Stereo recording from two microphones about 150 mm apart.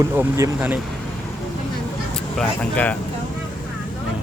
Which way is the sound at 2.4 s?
10° left (ahead or behind).